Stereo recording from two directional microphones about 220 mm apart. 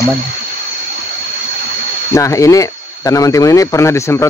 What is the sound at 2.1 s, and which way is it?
Speech, 15° left (ahead or behind).